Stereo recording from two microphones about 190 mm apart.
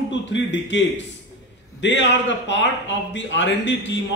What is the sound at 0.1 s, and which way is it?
A man's voice, 70° left (ahead or behind).